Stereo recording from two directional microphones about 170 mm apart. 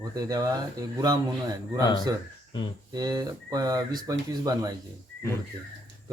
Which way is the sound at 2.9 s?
20° right (ahead or behind).